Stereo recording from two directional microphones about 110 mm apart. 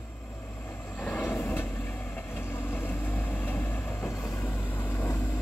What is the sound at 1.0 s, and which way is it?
Vehicle, 15° left (ahead or behind).